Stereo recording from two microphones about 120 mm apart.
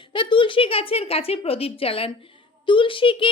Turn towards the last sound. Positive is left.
turn(degrees=45)  # may be behind; listen again after turning